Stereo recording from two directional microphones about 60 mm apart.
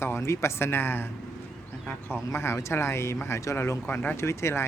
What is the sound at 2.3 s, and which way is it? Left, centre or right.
Speech, left.